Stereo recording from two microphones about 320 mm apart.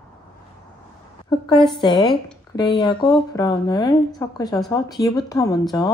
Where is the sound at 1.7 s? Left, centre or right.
Centre.